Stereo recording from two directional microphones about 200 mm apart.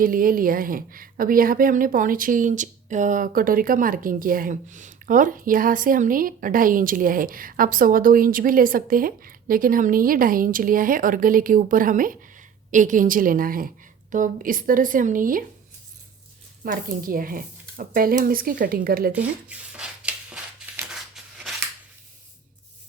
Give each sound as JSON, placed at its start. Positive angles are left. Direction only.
{"t": 0.0, "sound": "a woman's voice", "side_deg": -45}
{"t": 16.6, "sound": "a woman's voice", "side_deg": -45}
{"t": 19.1, "sound": "a sound", "side_deg": -5}